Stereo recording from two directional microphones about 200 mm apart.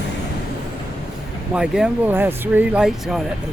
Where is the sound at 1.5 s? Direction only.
5° right (ahead or behind).